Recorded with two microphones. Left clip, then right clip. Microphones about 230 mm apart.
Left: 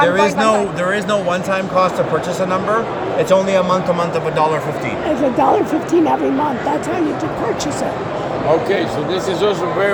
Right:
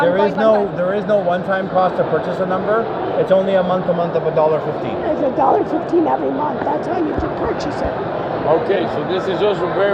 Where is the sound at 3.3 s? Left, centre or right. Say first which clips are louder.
Left 1 dB; left.